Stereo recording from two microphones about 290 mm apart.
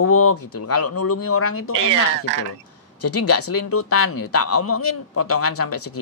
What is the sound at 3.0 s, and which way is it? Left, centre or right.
A man's voice, left.